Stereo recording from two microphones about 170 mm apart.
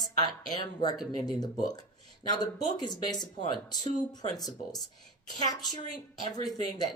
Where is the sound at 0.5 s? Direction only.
25° left (ahead or behind).